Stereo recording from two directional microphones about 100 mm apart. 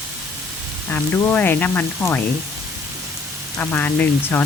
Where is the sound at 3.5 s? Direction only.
20° left (ahead or behind).